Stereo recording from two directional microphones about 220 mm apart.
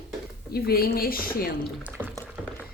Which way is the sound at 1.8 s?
5° right (ahead or behind).